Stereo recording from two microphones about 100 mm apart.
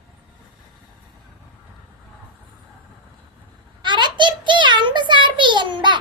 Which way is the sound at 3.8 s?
50° right (ahead or behind).